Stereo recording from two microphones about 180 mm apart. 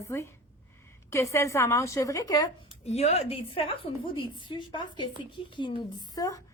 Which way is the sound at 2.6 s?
35° left (ahead or behind).